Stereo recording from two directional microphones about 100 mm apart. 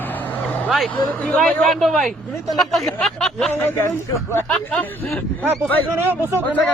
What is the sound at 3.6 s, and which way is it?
Speech, 25° left (ahead or behind).